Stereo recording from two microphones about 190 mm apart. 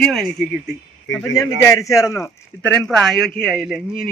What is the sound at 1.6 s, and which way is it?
A man's voice, 15° left (ahead or behind).